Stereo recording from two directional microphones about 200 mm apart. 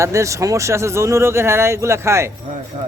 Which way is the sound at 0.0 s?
15° right (ahead or behind).